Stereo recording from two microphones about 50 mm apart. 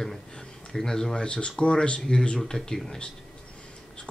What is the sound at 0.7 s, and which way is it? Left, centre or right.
Speech, centre.